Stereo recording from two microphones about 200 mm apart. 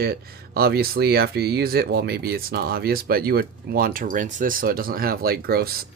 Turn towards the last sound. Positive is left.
turn(degrees=-50)  # may be behind; listen again after turning